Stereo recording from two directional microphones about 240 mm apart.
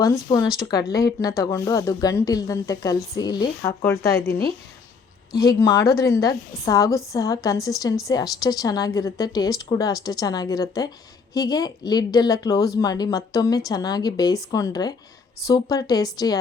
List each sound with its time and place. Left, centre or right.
0.6 s speech: centre